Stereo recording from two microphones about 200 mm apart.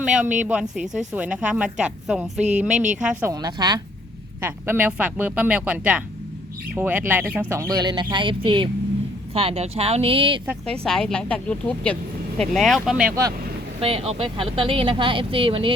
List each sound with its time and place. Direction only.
0.0 s speech: 5° right (ahead or behind)
2.7 s speech: 40° right (ahead or behind)
3.0 s speech: 5° right (ahead or behind)
3.4 s a woman's voice: 20° right (ahead or behind)
10.8 s speech: 5° left (ahead or behind)
13.8 s a woman's voice: 30° right (ahead or behind)